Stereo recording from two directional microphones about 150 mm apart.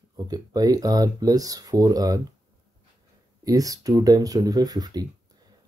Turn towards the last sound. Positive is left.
turn(degrees=-25)  # may be behind; listen again after turning